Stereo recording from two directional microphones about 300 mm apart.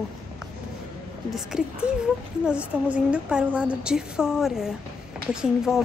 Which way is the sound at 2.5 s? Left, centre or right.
Centre.